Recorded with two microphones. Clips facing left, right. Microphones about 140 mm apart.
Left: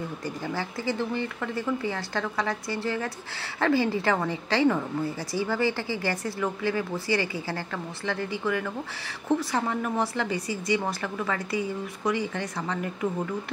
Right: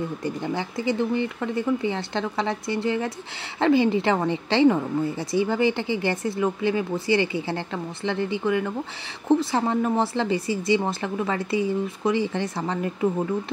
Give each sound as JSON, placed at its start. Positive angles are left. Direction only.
{"t": 0.2, "sound": "a woman's voice", "side_deg": -20}